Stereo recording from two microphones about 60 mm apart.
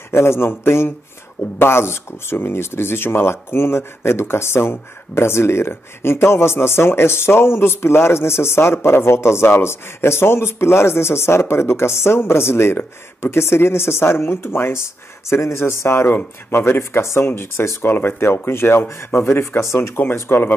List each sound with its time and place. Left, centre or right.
0.1 s speech: left
20.2 s speech: left